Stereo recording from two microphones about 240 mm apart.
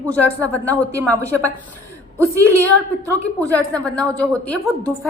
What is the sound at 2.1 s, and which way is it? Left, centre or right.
Speech, centre.